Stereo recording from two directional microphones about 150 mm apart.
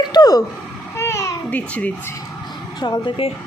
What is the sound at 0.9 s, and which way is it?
Babbling, 20° left (ahead or behind).